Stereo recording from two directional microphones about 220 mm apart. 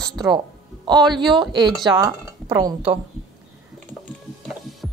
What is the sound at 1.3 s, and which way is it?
Speech, 20° right (ahead or behind).